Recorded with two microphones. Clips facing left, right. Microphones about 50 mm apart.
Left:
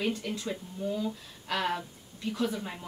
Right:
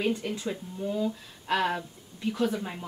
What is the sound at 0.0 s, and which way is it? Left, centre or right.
A woman's voice, centre.